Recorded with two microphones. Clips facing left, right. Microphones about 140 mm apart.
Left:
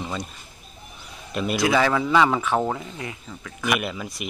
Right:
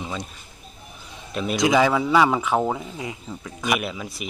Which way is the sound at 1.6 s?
15° right (ahead or behind).